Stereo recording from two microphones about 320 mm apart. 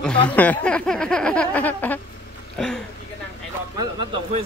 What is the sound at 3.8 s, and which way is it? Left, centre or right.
Speech, centre.